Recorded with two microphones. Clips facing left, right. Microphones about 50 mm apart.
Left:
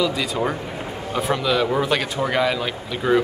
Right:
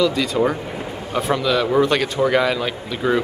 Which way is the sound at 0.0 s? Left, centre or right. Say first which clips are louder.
Right 4 dB; centre.